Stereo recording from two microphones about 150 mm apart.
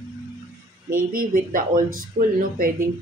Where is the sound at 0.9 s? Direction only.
65° right (ahead or behind).